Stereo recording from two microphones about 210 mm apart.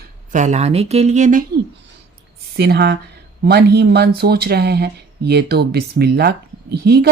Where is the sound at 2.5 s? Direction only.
50° right (ahead or behind).